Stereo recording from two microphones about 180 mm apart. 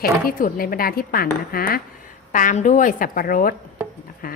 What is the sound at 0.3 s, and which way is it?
A woman's voice, 50° left (ahead or behind).